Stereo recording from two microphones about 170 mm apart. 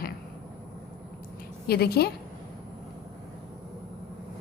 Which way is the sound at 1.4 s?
65° left (ahead or behind).